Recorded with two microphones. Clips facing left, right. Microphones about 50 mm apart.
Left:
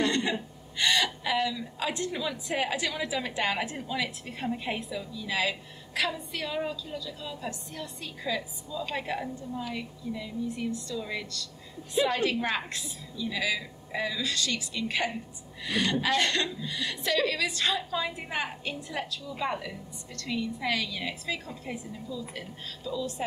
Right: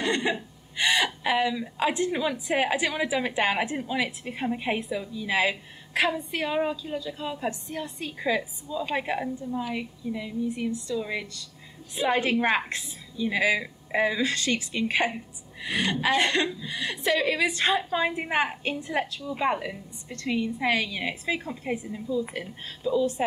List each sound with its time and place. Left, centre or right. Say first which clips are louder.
0.0 s a woman's voice: right 1 dB; right